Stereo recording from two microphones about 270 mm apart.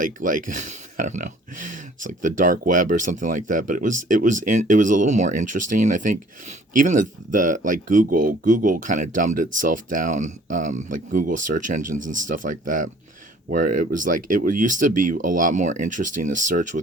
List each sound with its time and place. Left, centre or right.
0.0 s speech: right